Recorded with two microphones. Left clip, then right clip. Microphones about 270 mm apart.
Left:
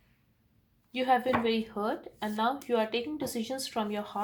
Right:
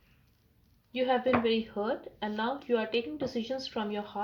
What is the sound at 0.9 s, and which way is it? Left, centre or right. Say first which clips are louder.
A woman's voice: left 1 dB; left.